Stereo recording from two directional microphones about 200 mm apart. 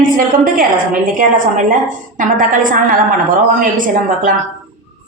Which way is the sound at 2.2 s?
40° right (ahead or behind).